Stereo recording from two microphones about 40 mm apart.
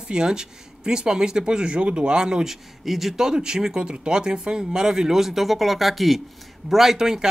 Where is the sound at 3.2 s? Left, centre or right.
Centre.